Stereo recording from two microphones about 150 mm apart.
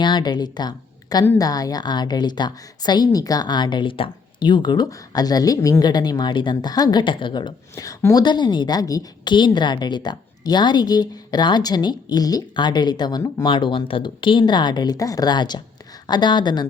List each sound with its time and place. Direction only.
0.0 s a woman's voice: 30° left (ahead or behind)